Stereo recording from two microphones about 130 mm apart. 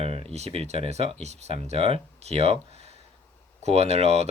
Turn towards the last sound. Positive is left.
turn(degrees=-55)  # may be behind; listen again after turning